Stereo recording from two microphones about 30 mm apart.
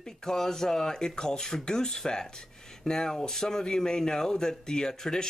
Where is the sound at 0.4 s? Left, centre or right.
Centre.